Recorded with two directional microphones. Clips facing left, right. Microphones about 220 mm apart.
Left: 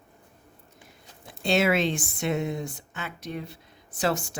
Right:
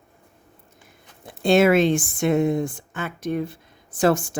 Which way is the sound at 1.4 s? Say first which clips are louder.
Right 7 dB; 50° right (ahead or behind).